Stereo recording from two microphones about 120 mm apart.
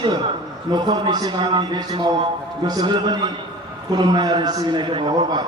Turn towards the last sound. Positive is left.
turn(degrees=-40)  # may be behind; listen again after turning